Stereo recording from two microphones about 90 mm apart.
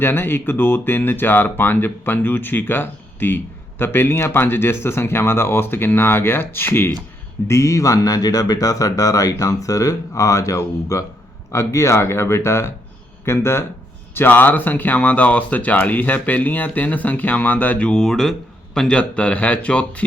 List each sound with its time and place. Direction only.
0.0 s speech: 25° left (ahead or behind)